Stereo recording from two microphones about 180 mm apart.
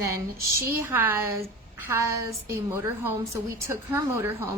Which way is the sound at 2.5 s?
15° right (ahead or behind).